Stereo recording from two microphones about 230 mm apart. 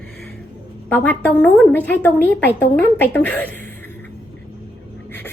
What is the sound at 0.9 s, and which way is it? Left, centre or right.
Speech, centre.